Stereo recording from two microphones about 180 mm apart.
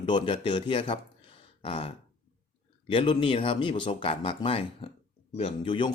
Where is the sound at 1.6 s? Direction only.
30° left (ahead or behind).